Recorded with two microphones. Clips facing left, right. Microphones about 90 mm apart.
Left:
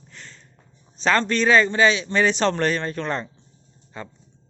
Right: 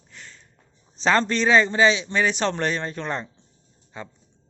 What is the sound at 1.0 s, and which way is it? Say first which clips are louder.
A man's voice: even; 25° right (ahead or behind).